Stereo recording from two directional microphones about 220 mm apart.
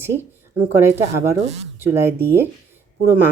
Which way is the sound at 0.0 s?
10° right (ahead or behind).